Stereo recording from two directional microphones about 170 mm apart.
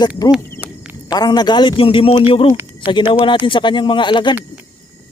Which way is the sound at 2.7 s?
30° left (ahead or behind).